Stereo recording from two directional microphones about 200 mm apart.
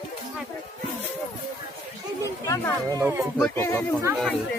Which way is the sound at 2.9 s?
15° right (ahead or behind).